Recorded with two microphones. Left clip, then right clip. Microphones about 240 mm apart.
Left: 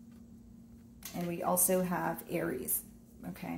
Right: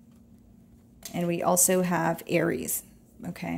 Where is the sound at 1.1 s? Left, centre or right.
Right.